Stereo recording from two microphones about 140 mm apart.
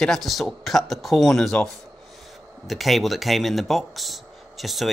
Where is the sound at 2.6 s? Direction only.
Centre (ahead or behind).